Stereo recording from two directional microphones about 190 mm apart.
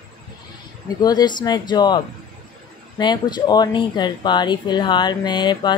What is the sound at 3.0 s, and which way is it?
Speech, 20° left (ahead or behind).